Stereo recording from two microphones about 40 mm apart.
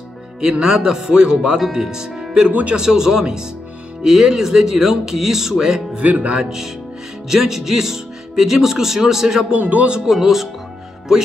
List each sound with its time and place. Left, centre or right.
0.4 s speech: centre
5.9 s speech: right
6.3 s speech: centre
9.6 s speech: right
10.0 s speech: centre